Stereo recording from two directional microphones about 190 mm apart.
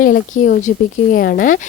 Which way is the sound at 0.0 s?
50° left (ahead or behind).